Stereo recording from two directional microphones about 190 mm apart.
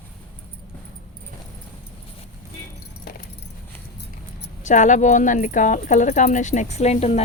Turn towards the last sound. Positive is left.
turn(degrees=35)  # may be behind; listen again after turning